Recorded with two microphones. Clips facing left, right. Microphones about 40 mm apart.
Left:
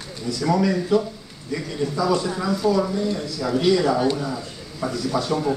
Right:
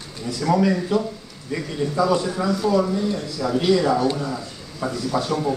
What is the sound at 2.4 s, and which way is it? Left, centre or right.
Speech, centre.